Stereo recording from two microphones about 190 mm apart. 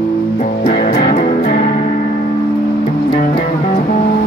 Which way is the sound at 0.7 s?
30° left (ahead or behind).